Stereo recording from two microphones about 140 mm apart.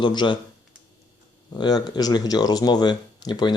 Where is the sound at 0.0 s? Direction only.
35° left (ahead or behind).